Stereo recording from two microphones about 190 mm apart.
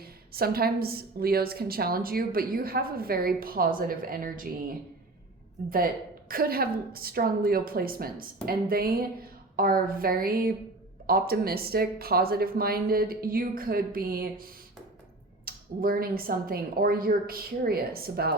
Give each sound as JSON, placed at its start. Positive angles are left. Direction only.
{"t": 0.0, "sound": "a woman's voice", "side_deg": -55}
{"t": 5.7, "sound": "a woman's voice", "side_deg": -50}
{"t": 15.4, "sound": "a woman's voice", "side_deg": -50}